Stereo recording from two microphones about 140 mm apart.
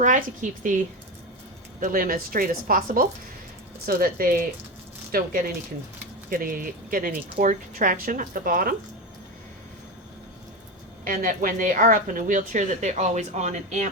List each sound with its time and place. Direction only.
0.0 s speech: 65° right (ahead or behind)
1.8 s speech: 80° right
6.3 s speech: 85° right
7.3 s speech: 70° right (ahead or behind); by 8.7 s 90° right
11.0 s a woman's voice: 90° right; by 13.9 s 60° right (ahead or behind)